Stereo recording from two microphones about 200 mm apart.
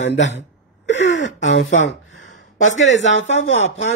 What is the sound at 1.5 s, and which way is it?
Speech, 70° left (ahead or behind).